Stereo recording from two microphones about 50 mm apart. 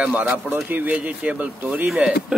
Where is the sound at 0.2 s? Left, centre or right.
Right.